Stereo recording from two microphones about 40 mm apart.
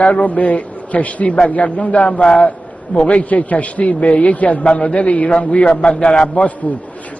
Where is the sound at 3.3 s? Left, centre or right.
Left.